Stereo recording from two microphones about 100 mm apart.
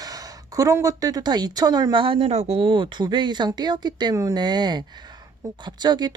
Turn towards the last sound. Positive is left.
turn(degrees=-45)  # may be behind; listen again after turning